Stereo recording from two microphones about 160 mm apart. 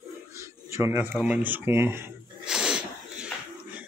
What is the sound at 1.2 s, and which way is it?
Speech, 10° right (ahead or behind).